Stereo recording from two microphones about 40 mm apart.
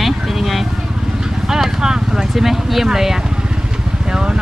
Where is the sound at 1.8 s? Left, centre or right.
Centre.